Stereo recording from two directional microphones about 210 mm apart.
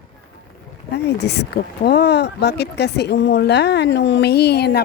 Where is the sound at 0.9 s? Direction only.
55° left (ahead or behind).